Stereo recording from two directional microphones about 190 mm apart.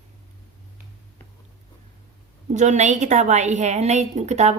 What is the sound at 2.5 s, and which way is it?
A woman's voice, 40° right (ahead or behind).